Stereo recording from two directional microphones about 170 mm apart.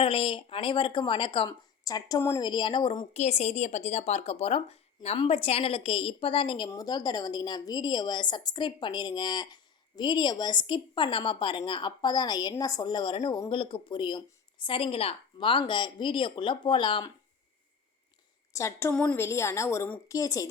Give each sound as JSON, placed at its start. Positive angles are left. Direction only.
{"t": 0.0, "sound": "a woman's voice", "side_deg": 35}
{"t": 3.1, "sound": "a woman's voice", "side_deg": 40}
{"t": 18.5, "sound": "a woman's voice", "side_deg": 15}